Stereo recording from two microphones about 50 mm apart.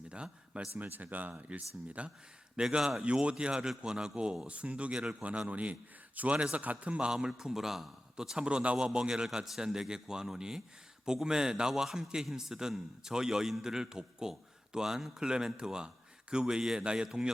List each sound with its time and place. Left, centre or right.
0.1 s a sound: right
0.8 s a man's voice: right
2.6 s a man's voice: centre